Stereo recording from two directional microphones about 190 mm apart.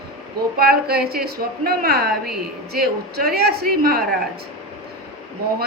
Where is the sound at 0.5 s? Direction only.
55° right (ahead or behind).